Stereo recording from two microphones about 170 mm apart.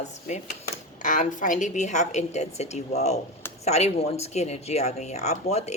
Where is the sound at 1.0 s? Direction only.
50° left (ahead or behind).